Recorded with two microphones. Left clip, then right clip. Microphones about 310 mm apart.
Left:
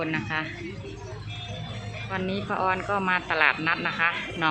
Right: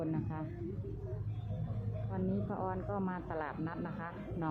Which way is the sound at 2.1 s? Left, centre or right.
Centre.